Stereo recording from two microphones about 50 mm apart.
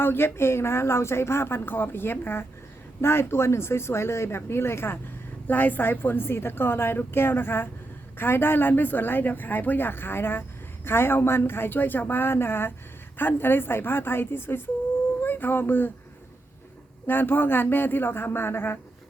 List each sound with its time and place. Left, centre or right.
0.0 s speech: left
5.5 s speech: left
17.1 s speech: left